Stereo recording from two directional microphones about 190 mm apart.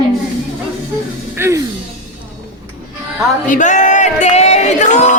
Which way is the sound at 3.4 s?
40° left (ahead or behind).